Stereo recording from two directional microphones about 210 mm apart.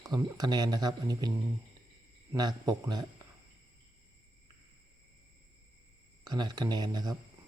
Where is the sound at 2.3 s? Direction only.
20° right (ahead or behind).